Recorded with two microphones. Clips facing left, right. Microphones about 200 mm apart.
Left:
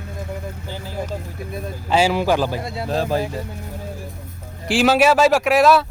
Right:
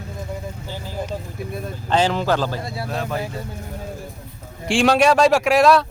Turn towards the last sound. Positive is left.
turn(degrees=0)  # may be behind; listen again after turning